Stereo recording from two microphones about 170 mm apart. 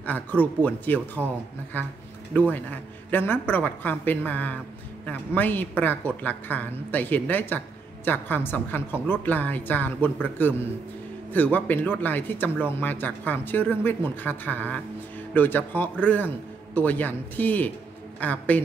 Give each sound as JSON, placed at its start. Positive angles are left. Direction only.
{"t": 0.0, "sound": "a woman's voice", "side_deg": 10}